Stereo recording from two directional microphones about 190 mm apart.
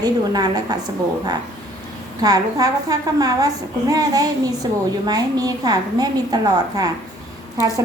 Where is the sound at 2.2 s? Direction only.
20° right (ahead or behind).